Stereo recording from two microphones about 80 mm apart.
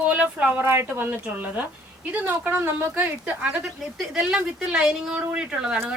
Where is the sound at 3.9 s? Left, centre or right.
Centre.